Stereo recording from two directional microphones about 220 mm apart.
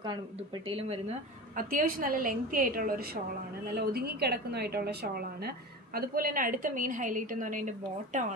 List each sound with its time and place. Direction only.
0.7 s speech: 25° right (ahead or behind)
1.6 s a woman's voice: 40° right (ahead or behind)